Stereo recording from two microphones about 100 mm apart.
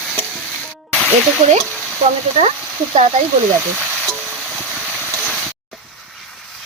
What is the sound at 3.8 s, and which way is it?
Frying, 15° left (ahead or behind).